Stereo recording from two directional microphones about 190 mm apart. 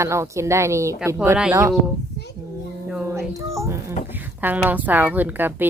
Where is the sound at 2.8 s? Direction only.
10° right (ahead or behind).